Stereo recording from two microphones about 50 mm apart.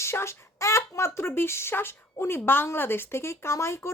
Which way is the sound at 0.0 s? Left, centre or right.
Left.